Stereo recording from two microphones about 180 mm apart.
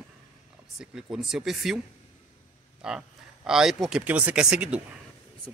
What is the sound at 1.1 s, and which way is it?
Speech, centre (ahead or behind).